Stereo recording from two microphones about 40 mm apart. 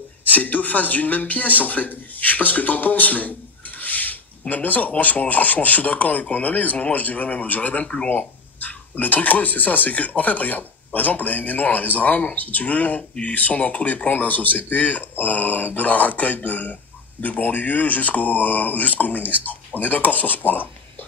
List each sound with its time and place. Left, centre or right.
0.2 s speech: left
7.8 s speech: left
8.1 s speech: left